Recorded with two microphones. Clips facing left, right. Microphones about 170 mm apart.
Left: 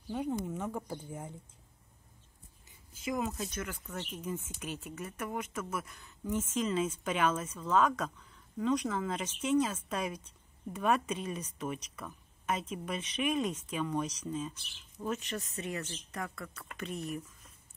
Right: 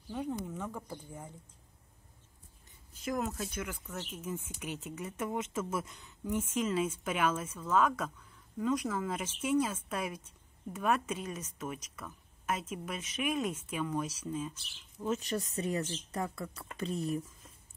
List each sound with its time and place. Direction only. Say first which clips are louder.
0.1 s speech: left 2 dB; 10° left (ahead or behind)
2.9 s speech: even; centre (ahead or behind)
3.8 s speech: left 1 dB; 5° left (ahead or behind)
4.2 s speech: left 1 dB; 5° right (ahead or behind)
15.0 s speech: right 3 dB; 35° right (ahead or behind)